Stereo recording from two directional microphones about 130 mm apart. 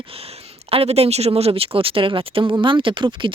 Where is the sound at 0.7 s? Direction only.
50° right (ahead or behind).